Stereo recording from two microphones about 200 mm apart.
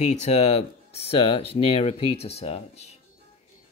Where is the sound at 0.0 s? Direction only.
35° left (ahead or behind).